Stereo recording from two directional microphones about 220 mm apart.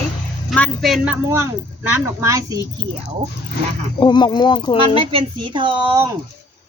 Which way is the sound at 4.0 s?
20° left (ahead or behind).